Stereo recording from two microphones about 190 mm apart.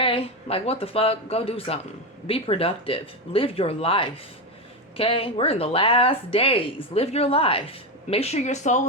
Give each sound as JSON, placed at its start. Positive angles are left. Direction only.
{"t": 0.0, "sound": "speech", "side_deg": 30}